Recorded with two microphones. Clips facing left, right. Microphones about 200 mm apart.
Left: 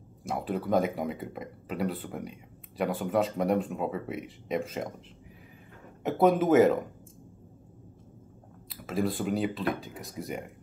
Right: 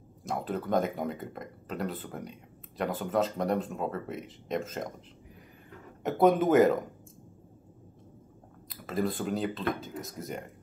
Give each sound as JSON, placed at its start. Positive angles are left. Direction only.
{"t": 0.3, "sound": "speech", "side_deg": 5}
{"t": 6.0, "sound": "speech", "side_deg": 5}
{"t": 8.6, "sound": "speech", "side_deg": 5}